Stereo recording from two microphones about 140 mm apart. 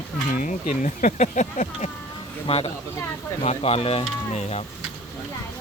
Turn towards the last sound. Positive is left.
turn(degrees=50)  # may be behind; listen again after turning